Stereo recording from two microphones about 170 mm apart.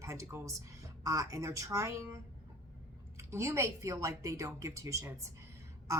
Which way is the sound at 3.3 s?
15° right (ahead or behind).